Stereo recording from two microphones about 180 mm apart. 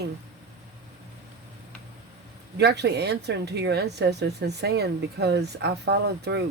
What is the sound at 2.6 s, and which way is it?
A woman's voice, 70° right (ahead or behind).